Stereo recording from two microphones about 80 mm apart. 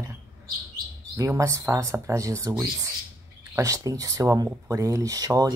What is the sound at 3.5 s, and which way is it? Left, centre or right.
Speech, right.